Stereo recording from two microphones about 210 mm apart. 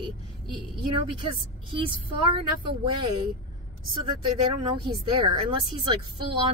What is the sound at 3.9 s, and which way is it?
Speech, 25° right (ahead or behind).